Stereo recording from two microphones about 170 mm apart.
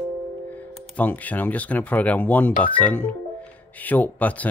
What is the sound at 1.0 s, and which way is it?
Speech, 10° left (ahead or behind).